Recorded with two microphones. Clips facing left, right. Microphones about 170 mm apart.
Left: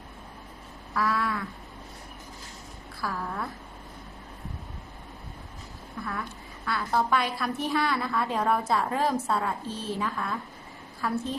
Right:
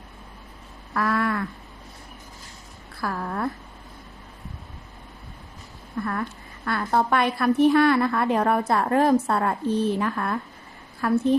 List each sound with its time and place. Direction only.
0.9 s a sound: 60° right (ahead or behind)
3.0 s a woman's voice: 55° right (ahead or behind)
6.0 s a woman's voice: 55° right (ahead or behind)